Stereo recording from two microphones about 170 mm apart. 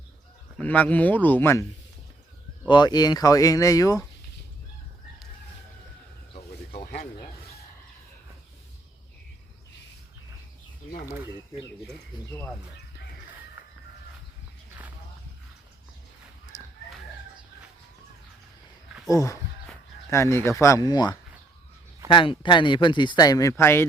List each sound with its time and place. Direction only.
0.6 s speech: 10° left (ahead or behind)
2.6 s speech: 25° left (ahead or behind)
6.7 s a sound: 65° left (ahead or behind)
12.1 s speech: 25° left (ahead or behind)
13.6 s chicken: 10° right (ahead or behind)
19.0 s speech: 20° left (ahead or behind)